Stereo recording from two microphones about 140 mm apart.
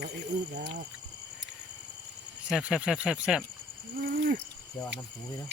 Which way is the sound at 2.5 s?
5° right (ahead or behind).